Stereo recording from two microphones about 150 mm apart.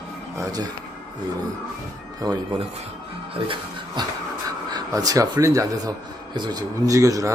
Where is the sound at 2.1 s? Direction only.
25° right (ahead or behind).